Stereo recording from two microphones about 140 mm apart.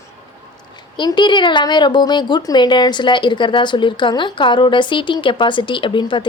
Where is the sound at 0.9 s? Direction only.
35° left (ahead or behind).